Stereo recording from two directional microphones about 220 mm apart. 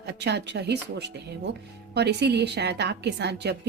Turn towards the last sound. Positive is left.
turn(degrees=-50)  # may be behind; listen again after turning